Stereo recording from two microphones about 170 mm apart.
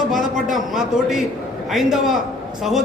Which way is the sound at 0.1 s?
Centre (ahead or behind).